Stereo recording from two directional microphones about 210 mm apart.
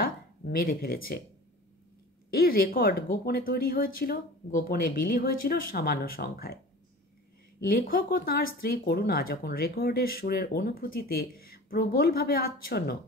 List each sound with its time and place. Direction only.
0.0 s speech: 45° left (ahead or behind)
2.3 s speech: 45° left (ahead or behind)
7.6 s speech: 45° left (ahead or behind)